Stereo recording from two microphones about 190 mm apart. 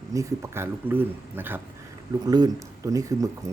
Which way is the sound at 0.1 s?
15° right (ahead or behind).